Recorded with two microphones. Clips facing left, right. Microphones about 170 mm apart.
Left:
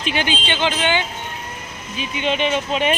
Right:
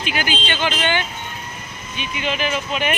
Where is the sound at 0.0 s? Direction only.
30° left (ahead or behind).